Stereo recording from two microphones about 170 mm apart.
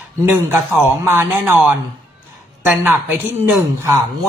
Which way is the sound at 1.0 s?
15° right (ahead or behind).